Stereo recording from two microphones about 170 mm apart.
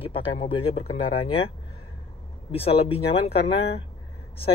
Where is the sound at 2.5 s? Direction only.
35° left (ahead or behind).